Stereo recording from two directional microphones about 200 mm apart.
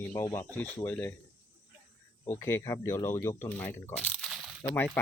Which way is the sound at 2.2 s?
15° left (ahead or behind).